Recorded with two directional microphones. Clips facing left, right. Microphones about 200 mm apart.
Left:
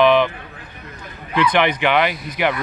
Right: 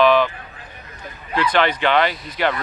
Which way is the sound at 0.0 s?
20° left (ahead or behind).